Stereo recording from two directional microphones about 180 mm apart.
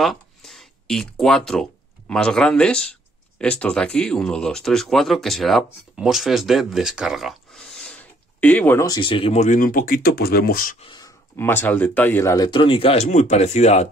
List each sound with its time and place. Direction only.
0.0 s speech: centre (ahead or behind); by 10.8 s 55° left (ahead or behind)
10.8 s speech: 25° left (ahead or behind)
11.3 s a man's voice: 10° left (ahead or behind); by 13.8 s 40° left (ahead or behind)